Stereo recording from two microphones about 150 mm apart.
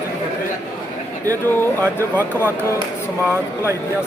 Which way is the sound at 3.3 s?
20° right (ahead or behind).